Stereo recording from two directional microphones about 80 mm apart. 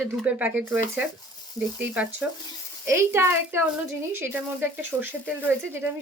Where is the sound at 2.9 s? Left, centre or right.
Right.